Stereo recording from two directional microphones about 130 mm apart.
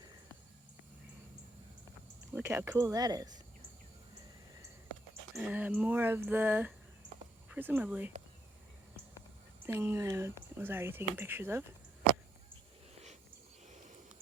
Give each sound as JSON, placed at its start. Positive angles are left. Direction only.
{"t": 2.3, "sound": "speech", "side_deg": -15}
{"t": 2.7, "sound": "speech", "side_deg": -30}
{"t": 5.3, "sound": "speech", "side_deg": -10}
{"t": 9.6, "sound": "speech", "side_deg": -20}